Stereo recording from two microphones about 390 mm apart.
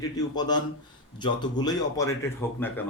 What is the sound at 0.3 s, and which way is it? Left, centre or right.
Speech, centre.